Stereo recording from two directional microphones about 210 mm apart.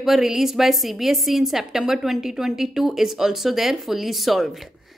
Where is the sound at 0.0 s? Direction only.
Centre (ahead or behind).